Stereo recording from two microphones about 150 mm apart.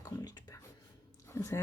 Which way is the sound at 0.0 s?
25° left (ahead or behind).